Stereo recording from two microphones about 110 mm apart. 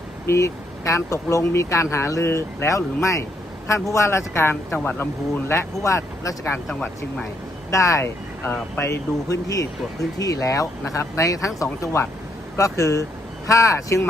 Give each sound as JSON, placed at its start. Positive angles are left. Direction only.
{"t": 0.3, "sound": "speech", "side_deg": 30}
{"t": 6.7, "sound": "speech", "side_deg": 10}
{"t": 7.7, "sound": "speech", "side_deg": 30}